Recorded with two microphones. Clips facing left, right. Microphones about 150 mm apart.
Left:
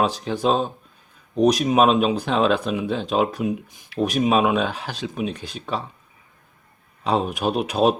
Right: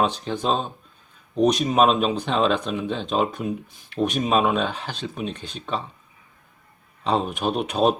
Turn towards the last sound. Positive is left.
turn(degrees=5)  # may be behind; listen again after turning